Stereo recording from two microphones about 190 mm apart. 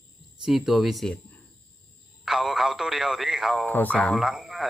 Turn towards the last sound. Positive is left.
turn(degrees=0)  # may be behind; listen again after turning